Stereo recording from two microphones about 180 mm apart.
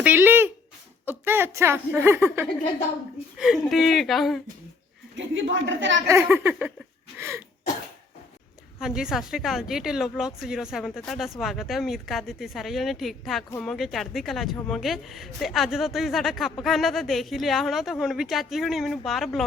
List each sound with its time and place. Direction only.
0.0 s a sound: 10° right (ahead or behind)
1.0 s a woman's voice: 10° right (ahead or behind)
3.3 s speech: 5° right (ahead or behind)
5.1 s a woman's voice: 90° right
6.1 s speech: 15° right (ahead or behind)
8.8 s speech: 5° right (ahead or behind)